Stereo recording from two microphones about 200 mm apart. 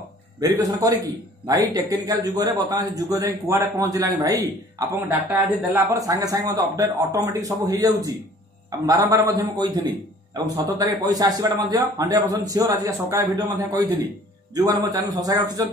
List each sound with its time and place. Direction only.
0.4 s a man's voice: 15° right (ahead or behind)